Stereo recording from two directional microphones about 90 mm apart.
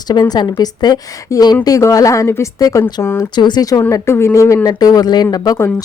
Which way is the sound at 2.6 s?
40° left (ahead or behind).